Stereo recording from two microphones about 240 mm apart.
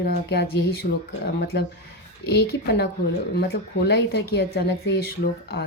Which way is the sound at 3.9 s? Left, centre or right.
Left.